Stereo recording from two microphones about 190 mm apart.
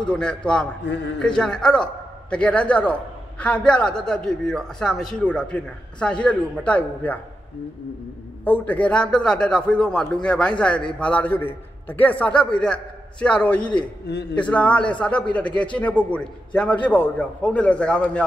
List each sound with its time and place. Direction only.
0.0 s a man's voice: 5° left (ahead or behind)
0.8 s a man's voice: 65° left (ahead or behind)
1.2 s a man's voice: 5° left (ahead or behind)
8.5 s a man's voice: 10° left (ahead or behind)
14.1 s speech: 60° left (ahead or behind)
14.5 s a man's voice: 5° left (ahead or behind)